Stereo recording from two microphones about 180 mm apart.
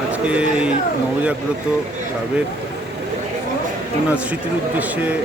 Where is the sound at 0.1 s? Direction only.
5° right (ahead or behind).